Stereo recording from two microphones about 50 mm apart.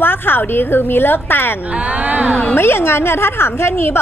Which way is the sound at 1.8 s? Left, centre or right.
Right.